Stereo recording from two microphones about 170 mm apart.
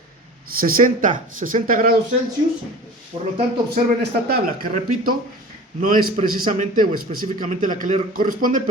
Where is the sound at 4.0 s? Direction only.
70° right (ahead or behind).